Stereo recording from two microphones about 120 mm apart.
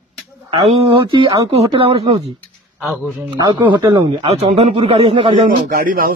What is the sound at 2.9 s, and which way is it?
Speech, 20° right (ahead or behind).